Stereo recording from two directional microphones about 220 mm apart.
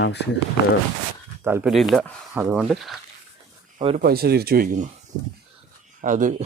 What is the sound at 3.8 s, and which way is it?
Speech, 25° right (ahead or behind).